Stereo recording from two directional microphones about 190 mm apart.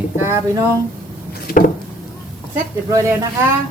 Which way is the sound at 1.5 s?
55° left (ahead or behind).